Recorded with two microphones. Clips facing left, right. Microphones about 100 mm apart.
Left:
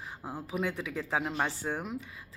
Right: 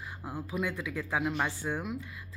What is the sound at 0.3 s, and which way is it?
Speech, 25° left (ahead or behind).